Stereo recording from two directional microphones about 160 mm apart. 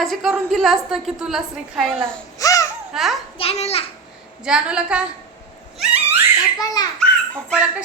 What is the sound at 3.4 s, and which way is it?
Speech, 40° left (ahead or behind).